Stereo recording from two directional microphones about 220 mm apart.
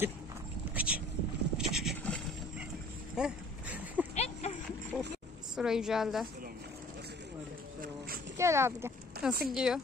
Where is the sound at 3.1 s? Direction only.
5° right (ahead or behind).